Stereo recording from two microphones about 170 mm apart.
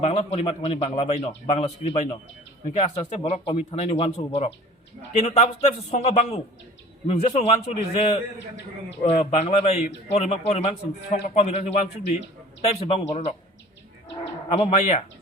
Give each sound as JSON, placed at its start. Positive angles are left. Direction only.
{"t": 0.0, "sound": "a man's voice", "side_deg": 35}
{"t": 14.5, "sound": "a man's voice", "side_deg": 35}